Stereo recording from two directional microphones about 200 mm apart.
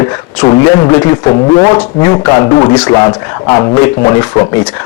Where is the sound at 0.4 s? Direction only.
20° left (ahead or behind).